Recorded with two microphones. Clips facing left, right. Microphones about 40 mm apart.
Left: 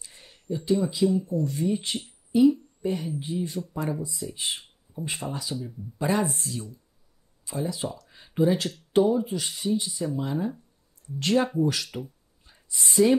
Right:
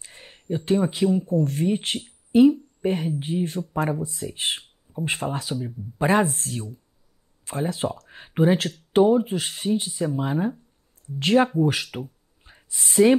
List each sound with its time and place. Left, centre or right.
0.0 s a woman's voice: right